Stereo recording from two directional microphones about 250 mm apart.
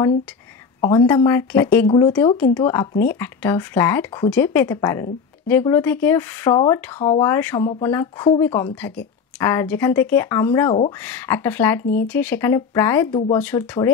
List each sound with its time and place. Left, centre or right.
0.7 s speech: centre
6.6 s speech: centre
7.3 s speech: centre